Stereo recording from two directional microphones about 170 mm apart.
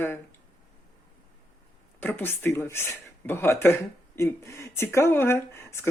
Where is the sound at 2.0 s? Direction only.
10° left (ahead or behind).